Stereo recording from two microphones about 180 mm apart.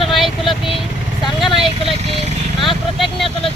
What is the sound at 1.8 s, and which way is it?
Speech, 30° right (ahead or behind).